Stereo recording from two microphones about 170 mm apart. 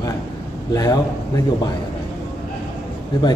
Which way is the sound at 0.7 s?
20° left (ahead or behind).